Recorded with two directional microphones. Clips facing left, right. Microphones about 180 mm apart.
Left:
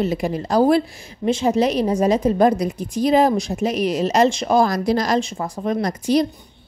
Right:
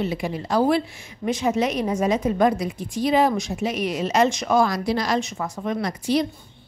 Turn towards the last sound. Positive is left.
turn(degrees=40)  # may be behind; listen again after turning